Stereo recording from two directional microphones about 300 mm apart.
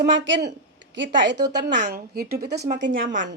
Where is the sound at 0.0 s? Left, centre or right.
Right.